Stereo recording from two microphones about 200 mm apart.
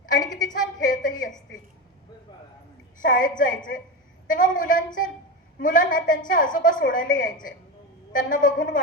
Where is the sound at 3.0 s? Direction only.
45° left (ahead or behind).